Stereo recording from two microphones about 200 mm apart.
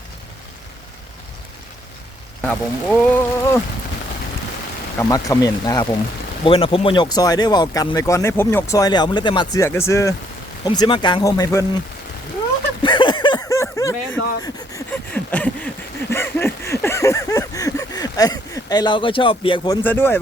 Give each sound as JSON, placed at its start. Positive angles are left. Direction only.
{"t": 2.4, "sound": "speech", "side_deg": 5}
{"t": 4.9, "sound": "speech", "side_deg": 15}
{"t": 12.8, "sound": "a sound", "side_deg": 25}